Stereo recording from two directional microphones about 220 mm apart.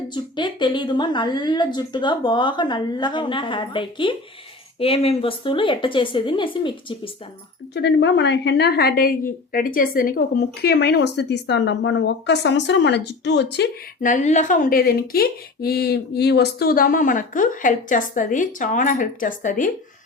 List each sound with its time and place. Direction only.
0.1 s speech: 20° left (ahead or behind)
7.7 s a woman's voice: 50° left (ahead or behind)
14.0 s speech: 35° left (ahead or behind)